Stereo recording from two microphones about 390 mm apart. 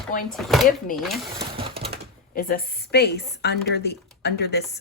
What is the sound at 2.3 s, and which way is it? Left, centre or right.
A woman's voice, left.